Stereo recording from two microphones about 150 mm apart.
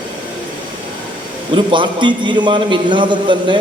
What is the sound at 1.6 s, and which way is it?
A man's voice, 30° right (ahead or behind).